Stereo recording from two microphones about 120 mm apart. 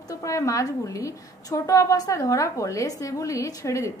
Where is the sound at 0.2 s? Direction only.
25° left (ahead or behind).